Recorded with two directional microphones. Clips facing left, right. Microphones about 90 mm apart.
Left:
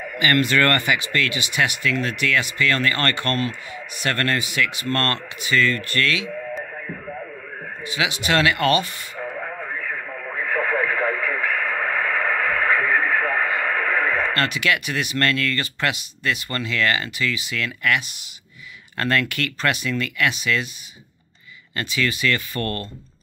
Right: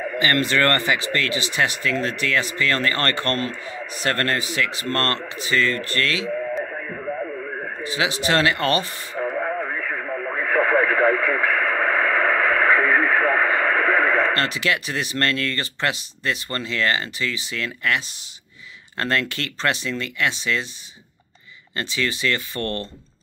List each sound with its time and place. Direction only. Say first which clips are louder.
0.0 s speech: left 1 dB; 30° right (ahead or behind)
7.8 s speech: right 1 dB; 35° right (ahead or behind)
10.4 s radio: right 3 dB; 40° right (ahead or behind)
12.2 s radio: right 3 dB; 75° right (ahead or behind)
12.9 s radio: right 2 dB; 35° right (ahead or behind)
13.9 s speech: right 3 dB; 35° right (ahead or behind)
21.7 s speech: left 1 dB; 30° right (ahead or behind)